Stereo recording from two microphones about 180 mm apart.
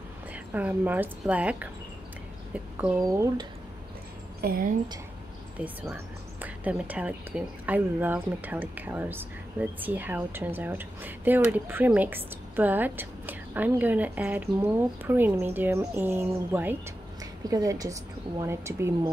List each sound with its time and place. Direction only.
0.3 s speech: 10° right (ahead or behind)
3.1 s speech: 20° right (ahead or behind)
4.4 s a woman's voice: 55° right (ahead or behind)
5.6 s speech: 10° right (ahead or behind)